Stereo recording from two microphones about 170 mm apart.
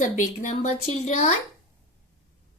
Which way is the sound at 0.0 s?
50° left (ahead or behind).